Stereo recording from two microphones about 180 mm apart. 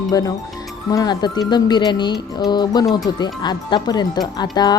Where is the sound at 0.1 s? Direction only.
20° left (ahead or behind).